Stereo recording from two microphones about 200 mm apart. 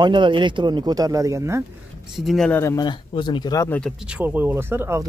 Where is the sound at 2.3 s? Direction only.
5° left (ahead or behind).